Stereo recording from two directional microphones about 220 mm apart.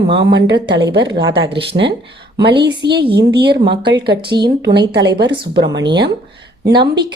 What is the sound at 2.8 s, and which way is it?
A woman's voice, 50° right (ahead or behind).